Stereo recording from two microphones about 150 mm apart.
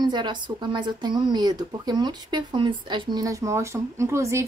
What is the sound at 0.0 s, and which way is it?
A woman's voice, 30° right (ahead or behind).